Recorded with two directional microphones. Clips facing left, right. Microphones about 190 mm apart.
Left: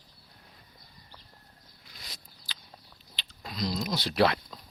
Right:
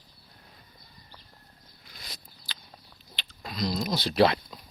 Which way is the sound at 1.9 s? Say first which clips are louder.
Right 3 dB; 55° right (ahead or behind).